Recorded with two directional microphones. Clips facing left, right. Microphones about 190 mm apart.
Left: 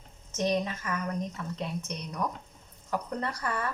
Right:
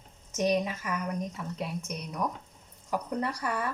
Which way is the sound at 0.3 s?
10° right (ahead or behind).